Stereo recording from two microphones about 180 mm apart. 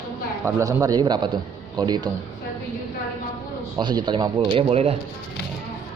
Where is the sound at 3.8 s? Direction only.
25° right (ahead or behind).